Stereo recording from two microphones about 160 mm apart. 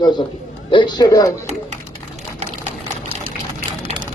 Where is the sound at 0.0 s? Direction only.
30° left (ahead or behind).